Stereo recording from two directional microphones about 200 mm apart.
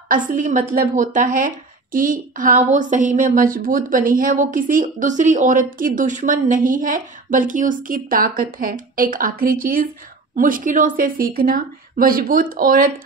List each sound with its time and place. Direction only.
0.1 s a woman's voice: 40° right (ahead or behind)